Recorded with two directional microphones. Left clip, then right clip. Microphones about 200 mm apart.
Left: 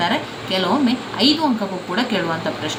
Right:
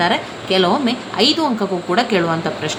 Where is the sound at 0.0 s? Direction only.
55° right (ahead or behind).